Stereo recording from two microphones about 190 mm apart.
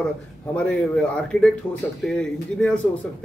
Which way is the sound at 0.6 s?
5° left (ahead or behind).